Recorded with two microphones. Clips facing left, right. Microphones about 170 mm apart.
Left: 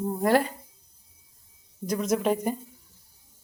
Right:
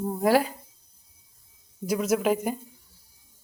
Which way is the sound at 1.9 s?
5° right (ahead or behind).